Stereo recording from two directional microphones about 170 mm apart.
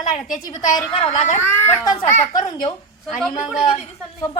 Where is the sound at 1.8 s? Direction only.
20° left (ahead or behind).